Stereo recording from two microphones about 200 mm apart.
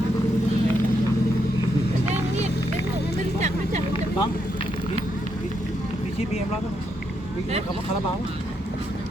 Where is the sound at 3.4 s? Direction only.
35° right (ahead or behind).